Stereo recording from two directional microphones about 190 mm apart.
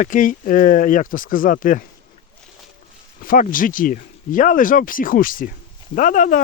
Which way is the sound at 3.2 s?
45° left (ahead or behind).